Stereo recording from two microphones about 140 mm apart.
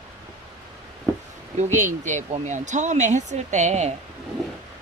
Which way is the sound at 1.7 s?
60° right (ahead or behind).